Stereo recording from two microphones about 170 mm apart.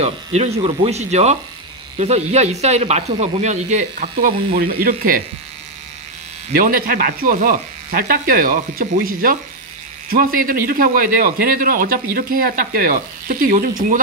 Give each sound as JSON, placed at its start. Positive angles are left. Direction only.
{"t": 0.0, "sound": "speech", "side_deg": -40}
{"t": 6.5, "sound": "a man's voice", "side_deg": -60}